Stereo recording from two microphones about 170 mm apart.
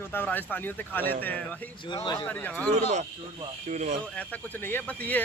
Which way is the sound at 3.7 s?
45° right (ahead or behind).